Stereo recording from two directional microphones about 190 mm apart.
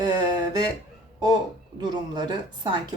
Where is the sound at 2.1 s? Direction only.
20° right (ahead or behind).